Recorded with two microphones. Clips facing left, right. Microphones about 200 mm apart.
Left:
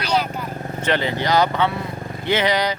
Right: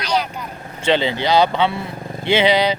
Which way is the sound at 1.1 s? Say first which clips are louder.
Right 2 dB; 25° right (ahead or behind).